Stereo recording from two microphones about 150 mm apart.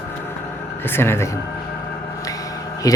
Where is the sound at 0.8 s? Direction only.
15° left (ahead or behind).